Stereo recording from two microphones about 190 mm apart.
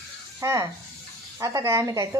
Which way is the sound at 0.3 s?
15° right (ahead or behind).